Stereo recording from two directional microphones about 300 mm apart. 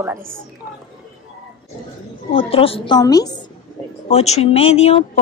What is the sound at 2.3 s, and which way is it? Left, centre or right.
A woman's voice, centre.